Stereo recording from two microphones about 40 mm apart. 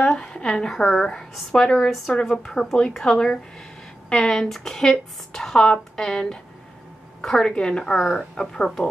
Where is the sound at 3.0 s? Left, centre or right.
Centre.